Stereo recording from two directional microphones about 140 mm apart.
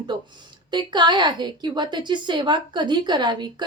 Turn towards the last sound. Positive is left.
turn(degrees=-30)  # may be behind; listen again after turning